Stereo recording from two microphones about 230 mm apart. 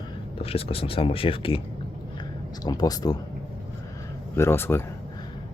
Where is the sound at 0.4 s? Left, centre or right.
Left.